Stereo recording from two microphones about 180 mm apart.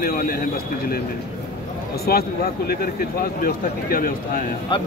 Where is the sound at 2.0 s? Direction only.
60° left (ahead or behind).